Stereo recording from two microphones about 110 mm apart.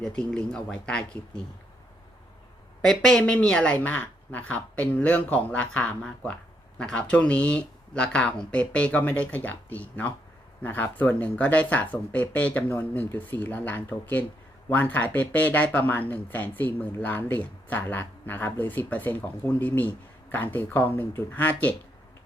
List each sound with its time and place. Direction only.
0.0 s speech: 5° left (ahead or behind)
2.8 s speech: 5° left (ahead or behind)